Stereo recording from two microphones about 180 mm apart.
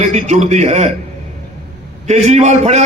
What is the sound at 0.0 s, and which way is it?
Speech, 40° right (ahead or behind).